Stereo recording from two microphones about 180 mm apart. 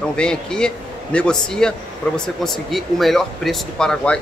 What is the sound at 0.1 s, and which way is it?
Speech, 5° left (ahead or behind).